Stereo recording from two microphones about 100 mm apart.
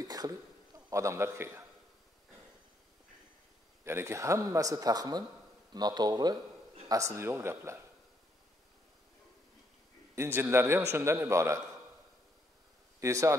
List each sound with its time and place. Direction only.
0.0 s a man's voice: 40° right (ahead or behind)
3.8 s a man's voice: 25° right (ahead or behind)
6.9 s a man's voice: 30° right (ahead or behind)
10.1 s a man's voice: 25° right (ahead or behind)
13.0 s a man's voice: 30° right (ahead or behind)